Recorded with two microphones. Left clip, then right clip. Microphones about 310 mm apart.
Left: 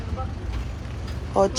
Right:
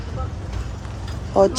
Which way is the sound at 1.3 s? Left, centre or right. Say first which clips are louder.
Right 5 dB; centre.